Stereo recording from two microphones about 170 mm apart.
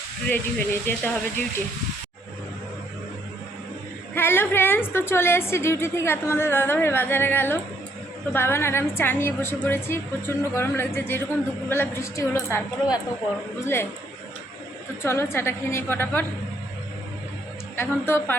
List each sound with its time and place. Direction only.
0.3 s a woman's voice: 10° left (ahead or behind)
4.1 s a woman's voice: 15° left (ahead or behind)
15.0 s a woman's voice: 15° left (ahead or behind)
17.7 s a woman's voice: 15° left (ahead or behind)